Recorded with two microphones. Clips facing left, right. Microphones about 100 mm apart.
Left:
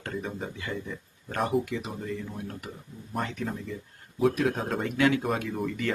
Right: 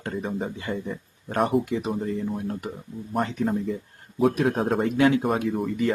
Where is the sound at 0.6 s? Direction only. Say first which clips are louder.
Right 5 dB; 35° right (ahead or behind).